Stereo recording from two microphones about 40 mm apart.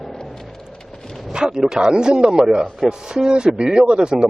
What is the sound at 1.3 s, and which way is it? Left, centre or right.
A man's voice, centre.